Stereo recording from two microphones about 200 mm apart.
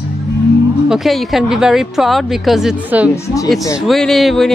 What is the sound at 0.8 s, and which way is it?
Speech, centre (ahead or behind).